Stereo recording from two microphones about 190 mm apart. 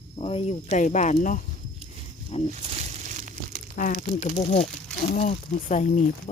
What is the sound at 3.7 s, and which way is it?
Speech, 45° left (ahead or behind).